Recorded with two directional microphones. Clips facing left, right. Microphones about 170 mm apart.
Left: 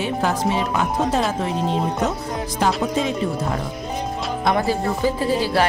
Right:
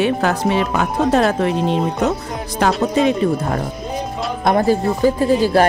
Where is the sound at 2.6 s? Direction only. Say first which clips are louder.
Right 5 dB; 70° right (ahead or behind).